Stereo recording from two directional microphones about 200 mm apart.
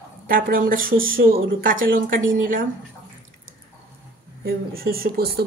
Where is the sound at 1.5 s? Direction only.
45° right (ahead or behind).